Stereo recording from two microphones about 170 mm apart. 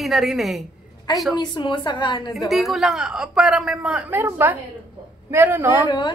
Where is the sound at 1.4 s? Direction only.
25° left (ahead or behind).